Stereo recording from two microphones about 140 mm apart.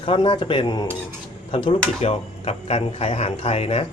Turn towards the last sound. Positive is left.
turn(degrees=45)  # may be behind; listen again after turning